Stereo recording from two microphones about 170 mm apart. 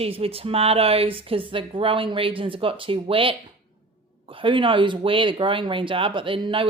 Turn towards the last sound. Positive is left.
turn(degrees=-30)  # may be behind; listen again after turning